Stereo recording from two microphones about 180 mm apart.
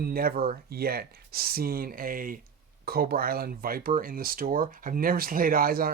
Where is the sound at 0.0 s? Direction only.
55° right (ahead or behind).